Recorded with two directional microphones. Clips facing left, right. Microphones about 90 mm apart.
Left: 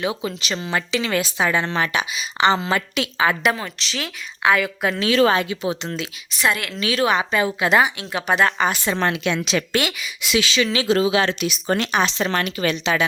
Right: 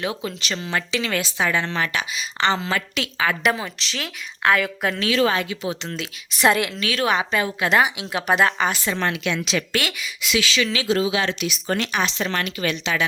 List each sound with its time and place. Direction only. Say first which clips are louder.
0.0 s a woman's voice: left 2 dB; 5° left (ahead or behind)
2.1 s a woman's voice: left 4 dB; 10° left (ahead or behind)
3.4 s a woman's voice: left 1 dB; 5° right (ahead or behind)
5.0 s speech: left 3 dB; 40° left (ahead or behind)
5.3 s a woman's voice: left 3 dB; 25° left (ahead or behind)
6.4 s a woman's voice: right 3 dB; 25° right (ahead or behind)
6.7 s a woman's voice: left 3 dB; 20° left (ahead or behind)
7.0 s a woman's voice: left 2 dB; centre (ahead or behind)
7.9 s a woman's voice: even; 5° right (ahead or behind)
8.8 s a woman's voice: left 3 dB; 30° left (ahead or behind)
10.9 s speech: left 4 dB; 50° left (ahead or behind); by 13.1 s 30° left (ahead or behind)